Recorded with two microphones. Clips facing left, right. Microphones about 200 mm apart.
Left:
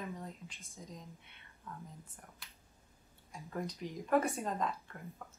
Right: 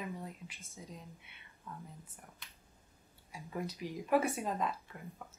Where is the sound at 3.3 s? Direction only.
5° right (ahead or behind).